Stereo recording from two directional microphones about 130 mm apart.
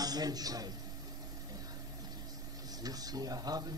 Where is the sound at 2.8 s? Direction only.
30° right (ahead or behind).